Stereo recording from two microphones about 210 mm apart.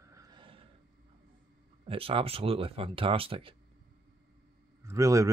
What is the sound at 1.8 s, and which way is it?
Speech, 25° right (ahead or behind).